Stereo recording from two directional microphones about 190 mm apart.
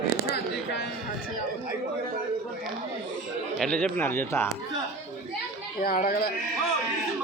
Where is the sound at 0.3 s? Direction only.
65° left (ahead or behind).